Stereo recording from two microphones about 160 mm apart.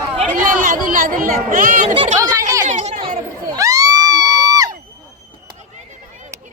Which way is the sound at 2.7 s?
45° right (ahead or behind).